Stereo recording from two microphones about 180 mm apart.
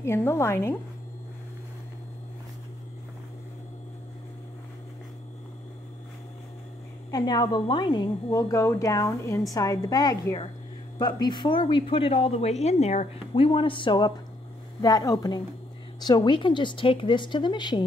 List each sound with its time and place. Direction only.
0.0 s a woman's voice: 15° left (ahead or behind)
7.1 s a woman's voice: 20° left (ahead or behind)